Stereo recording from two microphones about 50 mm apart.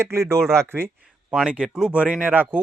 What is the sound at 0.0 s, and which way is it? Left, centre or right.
Speech, right.